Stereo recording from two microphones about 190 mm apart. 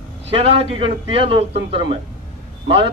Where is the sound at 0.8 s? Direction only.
30° right (ahead or behind).